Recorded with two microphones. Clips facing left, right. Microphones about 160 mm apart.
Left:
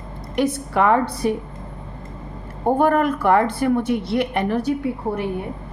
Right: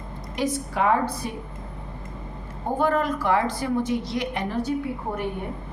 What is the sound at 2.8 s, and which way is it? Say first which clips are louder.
A woman's voice: left 3 dB; 55° left (ahead or behind).